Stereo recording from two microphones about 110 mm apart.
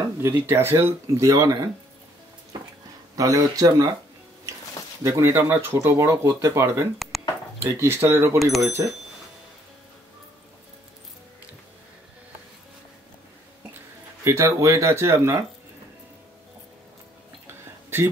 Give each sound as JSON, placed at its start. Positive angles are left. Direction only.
{"t": 0.0, "sound": "speech", "side_deg": -25}
{"t": 3.2, "sound": "speech", "side_deg": -35}
{"t": 5.0, "sound": "speech", "side_deg": -25}
{"t": 7.0, "sound": "a sound", "side_deg": 0}
{"t": 7.6, "sound": "speech", "side_deg": -20}
{"t": 8.4, "sound": "speech", "side_deg": 0}
{"t": 14.2, "sound": "speech", "side_deg": -25}
{"t": 17.5, "sound": "a sound", "side_deg": -20}